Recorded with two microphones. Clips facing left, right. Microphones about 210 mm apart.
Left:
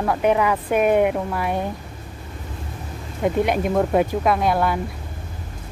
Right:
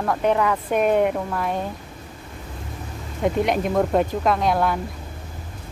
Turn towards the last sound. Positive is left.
turn(degrees=5)  # may be behind; listen again after turning